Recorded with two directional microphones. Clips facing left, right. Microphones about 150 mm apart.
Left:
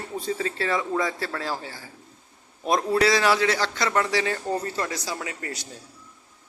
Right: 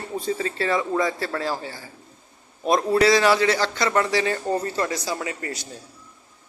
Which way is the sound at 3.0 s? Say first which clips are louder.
Right 4 dB; 5° left (ahead or behind).